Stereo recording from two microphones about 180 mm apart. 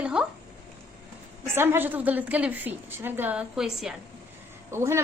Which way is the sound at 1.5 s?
15° right (ahead or behind).